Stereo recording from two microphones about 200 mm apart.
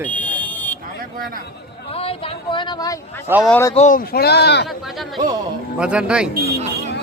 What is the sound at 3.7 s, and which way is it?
Speech, 40° left (ahead or behind).